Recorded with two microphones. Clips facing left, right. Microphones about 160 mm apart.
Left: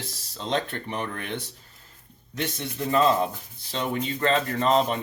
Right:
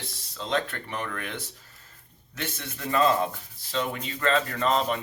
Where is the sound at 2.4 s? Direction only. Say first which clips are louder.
Left 5 dB; 30° left (ahead or behind).